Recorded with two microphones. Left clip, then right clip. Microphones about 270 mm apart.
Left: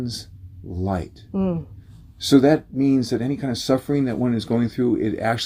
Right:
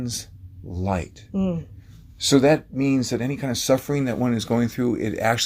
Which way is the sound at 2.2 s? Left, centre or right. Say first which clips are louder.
Left 1 dB; right.